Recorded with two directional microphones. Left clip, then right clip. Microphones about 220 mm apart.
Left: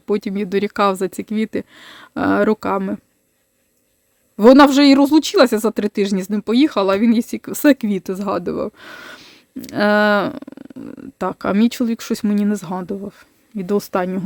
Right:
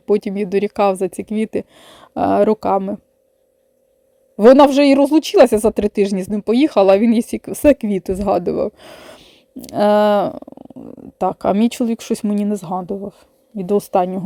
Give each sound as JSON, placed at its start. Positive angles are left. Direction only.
{"t": 0.0, "sound": "speech", "side_deg": -5}
{"t": 4.4, "sound": "speech", "side_deg": 0}
{"t": 11.2, "sound": "speech", "side_deg": -5}